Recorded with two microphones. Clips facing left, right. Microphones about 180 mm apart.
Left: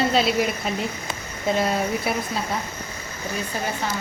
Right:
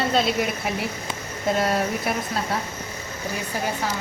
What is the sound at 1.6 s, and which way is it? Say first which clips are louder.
Speech: even; centre (ahead or behind).